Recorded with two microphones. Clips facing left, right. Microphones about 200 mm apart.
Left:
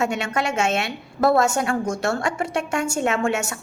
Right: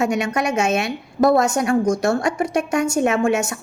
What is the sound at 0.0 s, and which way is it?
A woman's voice, 15° right (ahead or behind).